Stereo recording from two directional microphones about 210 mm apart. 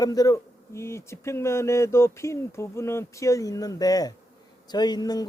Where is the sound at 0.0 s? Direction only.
15° left (ahead or behind).